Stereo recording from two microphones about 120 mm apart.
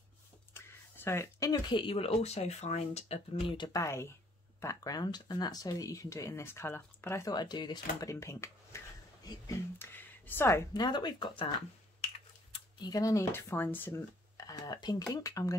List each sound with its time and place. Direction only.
0.6 s a sound: 20° left (ahead or behind)
1.5 s speech: 40° left (ahead or behind)
3.8 s speech: 25° left (ahead or behind)
7.3 s speech: 35° left (ahead or behind)
8.1 s a sound: 25° left (ahead or behind)
10.7 s speech: 35° left (ahead or behind)
12.8 s speech: 30° left (ahead or behind)